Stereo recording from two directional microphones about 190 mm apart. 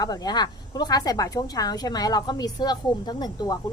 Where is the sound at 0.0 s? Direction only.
20° left (ahead or behind).